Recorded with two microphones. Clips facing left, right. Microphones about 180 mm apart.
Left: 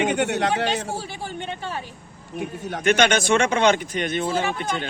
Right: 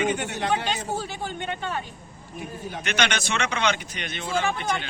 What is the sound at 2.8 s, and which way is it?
A man's voice, 50° left (ahead or behind).